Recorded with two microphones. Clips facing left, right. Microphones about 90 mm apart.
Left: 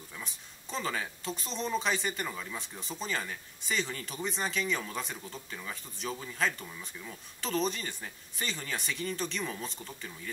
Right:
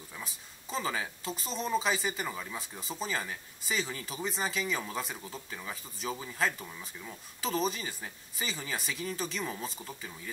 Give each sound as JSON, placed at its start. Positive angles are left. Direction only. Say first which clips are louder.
{"t": 0.1, "sound": "speech", "louder": "right 1 dB", "side_deg": -5}